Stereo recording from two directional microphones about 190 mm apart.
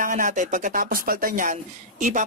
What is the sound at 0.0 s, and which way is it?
Speech, 45° right (ahead or behind).